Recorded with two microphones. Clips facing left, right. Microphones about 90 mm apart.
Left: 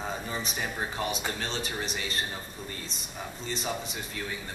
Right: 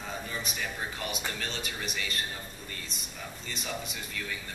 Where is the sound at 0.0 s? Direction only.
35° left (ahead or behind).